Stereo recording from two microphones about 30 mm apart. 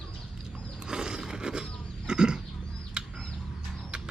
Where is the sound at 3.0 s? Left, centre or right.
Right.